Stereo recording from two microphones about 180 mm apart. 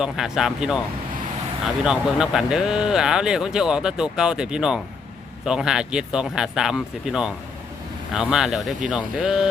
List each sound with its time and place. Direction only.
0.0 s speech: centre (ahead or behind)